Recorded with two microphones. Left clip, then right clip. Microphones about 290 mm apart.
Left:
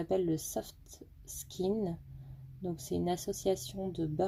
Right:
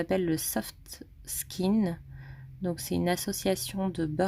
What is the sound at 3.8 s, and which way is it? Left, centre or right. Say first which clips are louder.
Speech: right 5 dB; right.